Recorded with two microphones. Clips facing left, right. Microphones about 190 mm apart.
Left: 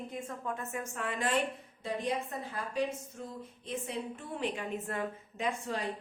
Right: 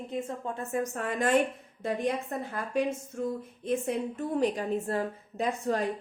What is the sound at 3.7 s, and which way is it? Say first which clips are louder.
A woman's voice: right 8 dB; 45° right (ahead or behind).